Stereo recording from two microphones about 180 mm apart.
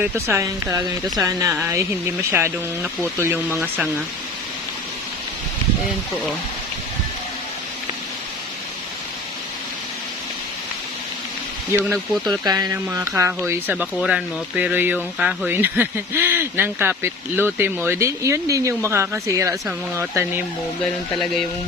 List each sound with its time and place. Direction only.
0.3 s speech: 15° right (ahead or behind)
11.9 s speech: centre (ahead or behind)
12.5 s speech: 20° right (ahead or behind)